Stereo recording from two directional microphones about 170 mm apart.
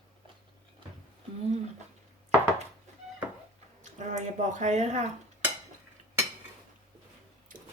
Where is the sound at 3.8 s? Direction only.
45° right (ahead or behind).